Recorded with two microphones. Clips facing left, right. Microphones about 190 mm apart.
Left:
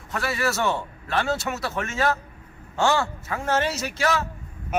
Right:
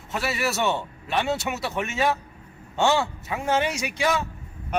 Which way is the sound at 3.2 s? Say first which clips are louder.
Even; 15° right (ahead or behind).